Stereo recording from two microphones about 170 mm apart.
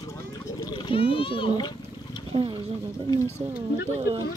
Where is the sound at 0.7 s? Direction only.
30° left (ahead or behind).